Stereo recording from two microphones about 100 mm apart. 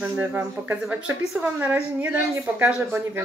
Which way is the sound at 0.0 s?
15° right (ahead or behind).